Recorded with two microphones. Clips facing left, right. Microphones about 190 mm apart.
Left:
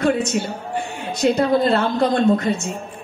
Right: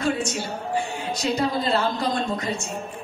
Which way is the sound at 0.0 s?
55° left (ahead or behind).